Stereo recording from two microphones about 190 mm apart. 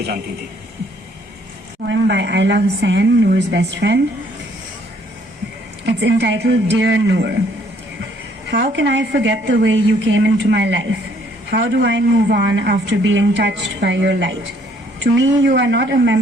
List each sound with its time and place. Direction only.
1.9 s speech: 65° right (ahead or behind)
5.8 s speech: 65° right (ahead or behind)
8.4 s a woman's voice: 60° right (ahead or behind)